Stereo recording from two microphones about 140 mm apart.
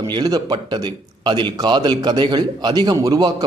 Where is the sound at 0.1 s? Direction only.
30° right (ahead or behind).